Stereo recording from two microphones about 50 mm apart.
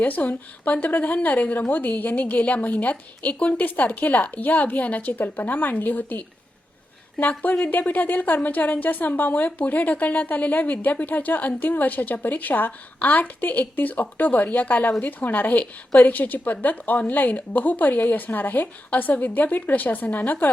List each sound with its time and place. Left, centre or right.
0.0 s a woman's voice: left
3.6 s a woman's voice: left